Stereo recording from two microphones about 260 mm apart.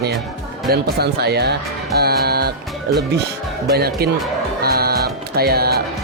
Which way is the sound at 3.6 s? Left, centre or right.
Right.